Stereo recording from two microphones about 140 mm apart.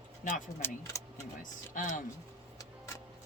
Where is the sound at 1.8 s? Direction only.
65° left (ahead or behind).